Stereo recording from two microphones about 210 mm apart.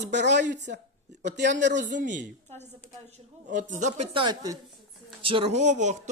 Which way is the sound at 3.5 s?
35° right (ahead or behind).